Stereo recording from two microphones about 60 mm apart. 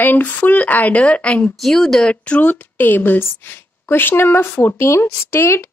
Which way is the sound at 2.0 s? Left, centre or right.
Centre.